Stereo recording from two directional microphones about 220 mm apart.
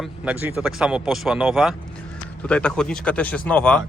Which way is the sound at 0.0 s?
5° right (ahead or behind).